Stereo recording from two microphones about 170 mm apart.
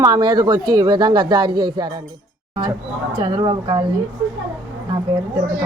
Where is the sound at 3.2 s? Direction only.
30° right (ahead or behind).